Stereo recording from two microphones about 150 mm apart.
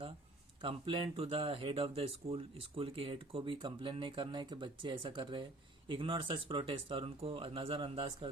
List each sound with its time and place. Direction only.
0.6 s speech: 35° right (ahead or behind)